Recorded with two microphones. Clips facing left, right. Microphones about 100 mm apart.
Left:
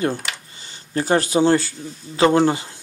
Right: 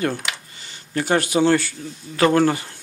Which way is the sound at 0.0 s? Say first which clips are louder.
Left 1 dB; 30° left (ahead or behind).